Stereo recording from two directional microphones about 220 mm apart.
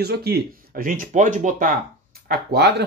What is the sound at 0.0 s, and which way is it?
Speech, 45° right (ahead or behind).